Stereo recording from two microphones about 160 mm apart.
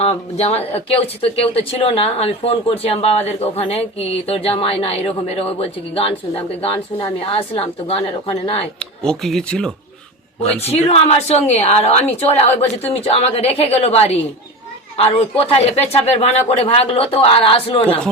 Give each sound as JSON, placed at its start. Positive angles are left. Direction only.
{"t": 0.0, "sound": "speech", "side_deg": 40}
{"t": 8.8, "sound": "speech", "side_deg": 5}
{"t": 10.6, "sound": "speech", "side_deg": 40}